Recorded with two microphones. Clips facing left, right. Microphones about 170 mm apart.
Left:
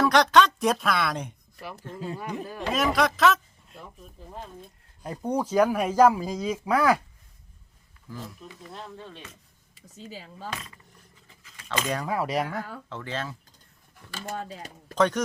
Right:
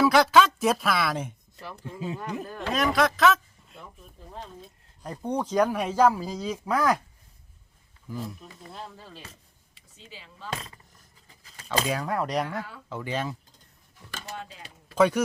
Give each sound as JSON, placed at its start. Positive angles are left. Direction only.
{"t": 0.0, "sound": "speech", "side_deg": -5}
{"t": 5.0, "sound": "speech", "side_deg": 10}
{"t": 8.7, "sound": "speech", "side_deg": -5}
{"t": 9.7, "sound": "speech", "side_deg": 40}
{"t": 10.5, "sound": "speech", "side_deg": -30}
{"t": 11.4, "sound": "keys jangling", "side_deg": -35}
{"t": 11.9, "sound": "speech", "side_deg": 0}
{"t": 12.9, "sound": "speech", "side_deg": -10}
{"t": 14.3, "sound": "speech", "side_deg": 40}
{"t": 14.9, "sound": "speech", "side_deg": -10}